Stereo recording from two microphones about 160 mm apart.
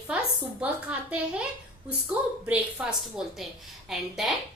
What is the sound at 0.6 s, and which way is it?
A woman's voice, 10° right (ahead or behind).